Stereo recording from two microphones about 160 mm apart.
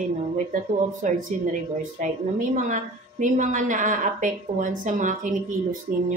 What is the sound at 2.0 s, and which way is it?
A woman's voice, 55° right (ahead or behind).